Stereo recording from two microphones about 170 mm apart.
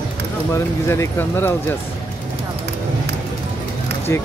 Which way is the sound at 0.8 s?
15° left (ahead or behind).